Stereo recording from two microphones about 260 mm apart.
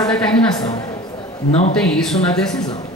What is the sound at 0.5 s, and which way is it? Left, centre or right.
Speech, centre.